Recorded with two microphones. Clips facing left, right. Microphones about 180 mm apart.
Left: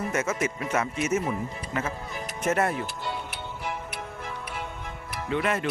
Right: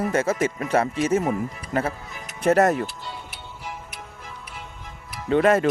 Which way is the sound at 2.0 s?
35° left (ahead or behind).